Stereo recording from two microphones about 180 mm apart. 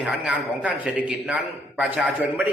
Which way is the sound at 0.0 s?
5° right (ahead or behind).